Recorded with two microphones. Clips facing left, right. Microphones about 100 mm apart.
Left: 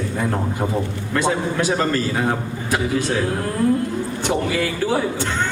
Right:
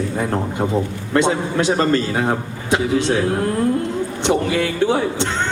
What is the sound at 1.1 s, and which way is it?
A man's voice, 25° right (ahead or behind).